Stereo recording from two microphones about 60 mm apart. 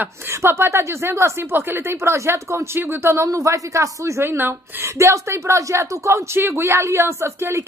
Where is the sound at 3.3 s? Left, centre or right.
Right.